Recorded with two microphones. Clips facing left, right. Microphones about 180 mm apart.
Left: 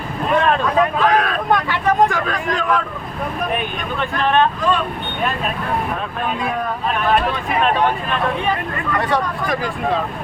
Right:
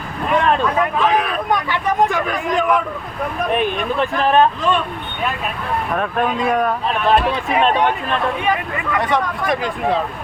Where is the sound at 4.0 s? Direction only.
35° right (ahead or behind).